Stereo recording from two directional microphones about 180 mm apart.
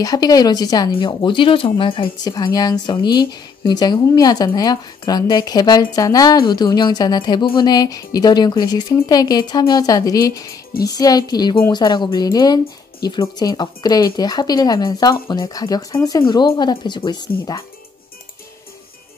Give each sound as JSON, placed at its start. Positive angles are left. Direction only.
{"t": 0.0, "sound": "speech", "side_deg": 20}